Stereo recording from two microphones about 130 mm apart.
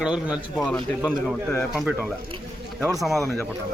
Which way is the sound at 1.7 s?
5° right (ahead or behind).